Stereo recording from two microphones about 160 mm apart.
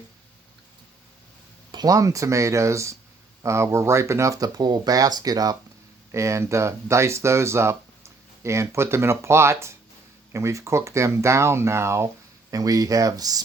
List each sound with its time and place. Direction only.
1.7 s speech: 25° right (ahead or behind)